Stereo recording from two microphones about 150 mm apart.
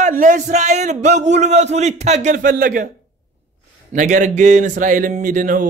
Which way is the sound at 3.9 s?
55° right (ahead or behind).